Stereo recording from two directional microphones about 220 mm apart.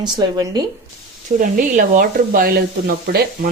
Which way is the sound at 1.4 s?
40° right (ahead or behind).